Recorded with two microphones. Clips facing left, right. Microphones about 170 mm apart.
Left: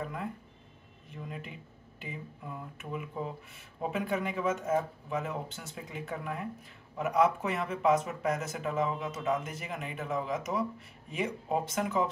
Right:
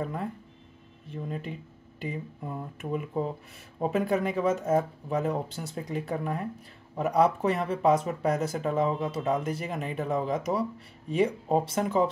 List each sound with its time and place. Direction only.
1.1 s speech: 35° right (ahead or behind)